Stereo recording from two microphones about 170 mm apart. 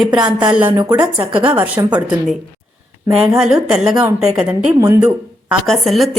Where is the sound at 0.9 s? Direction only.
10° right (ahead or behind).